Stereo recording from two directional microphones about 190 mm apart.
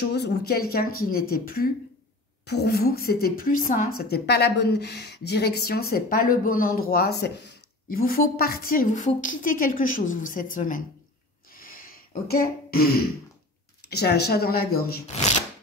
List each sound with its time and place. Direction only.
0.1 s a woman's voice: 55° left (ahead or behind)
11.5 s a sound: 50° left (ahead or behind)
12.3 s a woman's voice: 55° left (ahead or behind)